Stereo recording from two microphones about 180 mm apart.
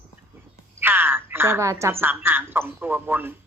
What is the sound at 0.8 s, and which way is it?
A woman's voice, 10° right (ahead or behind).